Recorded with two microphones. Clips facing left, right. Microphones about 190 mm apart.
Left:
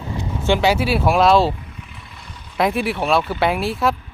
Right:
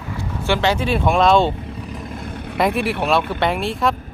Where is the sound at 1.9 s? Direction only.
45° right (ahead or behind).